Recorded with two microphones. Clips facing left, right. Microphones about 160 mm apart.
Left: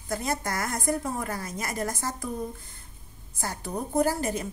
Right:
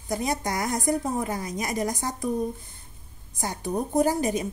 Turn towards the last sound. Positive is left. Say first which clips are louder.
# right 3 dB
turn(degrees=-15)  # may be behind; listen again after turning